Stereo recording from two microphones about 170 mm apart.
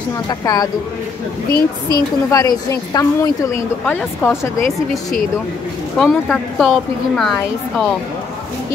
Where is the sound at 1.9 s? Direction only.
20° left (ahead or behind).